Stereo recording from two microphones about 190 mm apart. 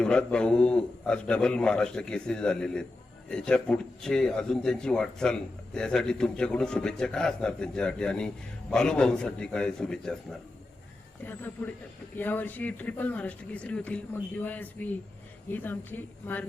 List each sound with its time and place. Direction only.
0.0 s a man's voice: 5° left (ahead or behind)
11.3 s speech: 10° left (ahead or behind)